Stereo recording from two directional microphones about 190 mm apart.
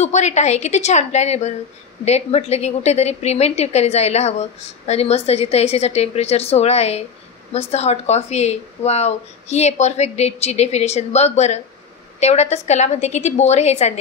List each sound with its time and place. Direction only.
0.0 s a woman's voice: 35° left (ahead or behind)